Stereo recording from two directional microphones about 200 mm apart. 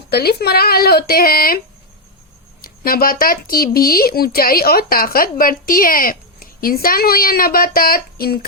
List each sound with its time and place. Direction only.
0.1 s speech: 50° left (ahead or behind)
2.6 s speech: 45° left (ahead or behind)